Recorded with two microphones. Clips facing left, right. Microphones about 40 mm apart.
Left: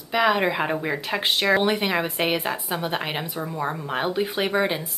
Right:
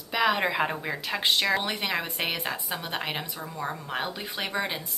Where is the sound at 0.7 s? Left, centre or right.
Centre.